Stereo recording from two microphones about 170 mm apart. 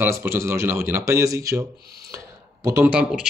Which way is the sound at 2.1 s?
20° right (ahead or behind).